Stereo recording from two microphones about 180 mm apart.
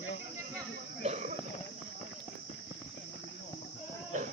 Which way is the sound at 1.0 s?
40° right (ahead or behind).